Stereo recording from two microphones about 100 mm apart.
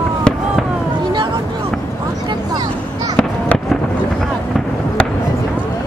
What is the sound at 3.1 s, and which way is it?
Fireworks, 5° left (ahead or behind).